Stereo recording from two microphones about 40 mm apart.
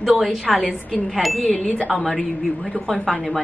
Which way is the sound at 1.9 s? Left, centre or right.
Centre.